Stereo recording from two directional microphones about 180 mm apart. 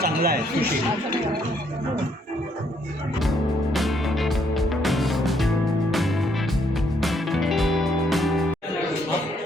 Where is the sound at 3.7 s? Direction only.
Centre (ahead or behind).